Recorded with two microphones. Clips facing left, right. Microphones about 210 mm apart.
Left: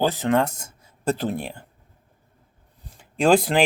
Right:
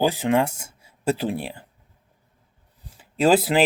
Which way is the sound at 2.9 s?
5° right (ahead or behind).